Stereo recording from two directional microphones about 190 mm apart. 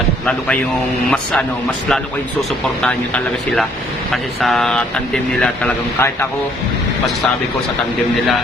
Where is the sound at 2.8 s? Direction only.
5° left (ahead or behind).